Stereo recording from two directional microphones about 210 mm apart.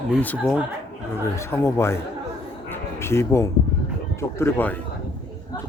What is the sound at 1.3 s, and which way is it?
Speech, 15° left (ahead or behind).